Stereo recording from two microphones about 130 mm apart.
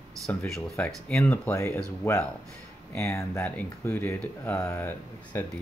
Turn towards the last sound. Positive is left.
turn(degrees=15)  # may be behind; listen again after turning